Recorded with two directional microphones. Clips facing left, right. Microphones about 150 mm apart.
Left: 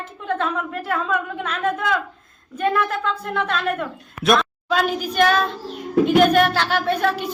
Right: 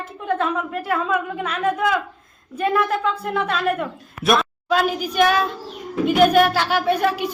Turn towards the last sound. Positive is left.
turn(degrees=-10)  # may be behind; listen again after turning